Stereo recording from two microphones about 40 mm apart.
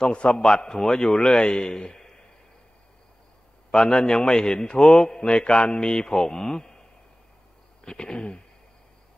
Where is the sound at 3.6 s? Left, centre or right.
Left.